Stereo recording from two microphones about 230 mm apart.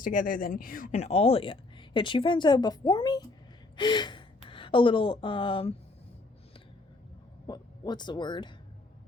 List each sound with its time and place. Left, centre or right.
0.0 s a woman's voice: left
7.4 s speech: centre